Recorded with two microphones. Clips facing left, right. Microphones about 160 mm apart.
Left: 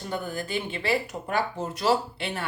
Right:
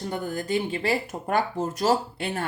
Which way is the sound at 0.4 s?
40° right (ahead or behind).